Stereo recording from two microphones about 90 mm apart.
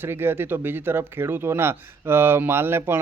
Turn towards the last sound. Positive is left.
turn(degrees=-25)  # may be behind; listen again after turning